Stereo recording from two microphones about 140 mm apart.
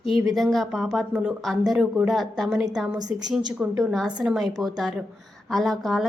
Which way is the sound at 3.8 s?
Centre (ahead or behind).